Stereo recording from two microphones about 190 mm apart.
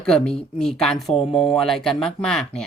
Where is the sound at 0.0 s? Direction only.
5° left (ahead or behind).